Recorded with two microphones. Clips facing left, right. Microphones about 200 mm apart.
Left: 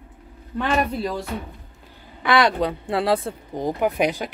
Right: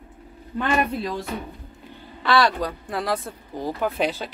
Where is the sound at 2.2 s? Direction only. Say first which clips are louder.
Left 2 dB; 15° left (ahead or behind).